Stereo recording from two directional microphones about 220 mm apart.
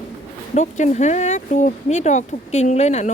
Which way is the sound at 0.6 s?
30° left (ahead or behind).